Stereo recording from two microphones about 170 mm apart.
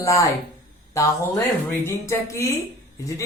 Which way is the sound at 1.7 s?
15° left (ahead or behind).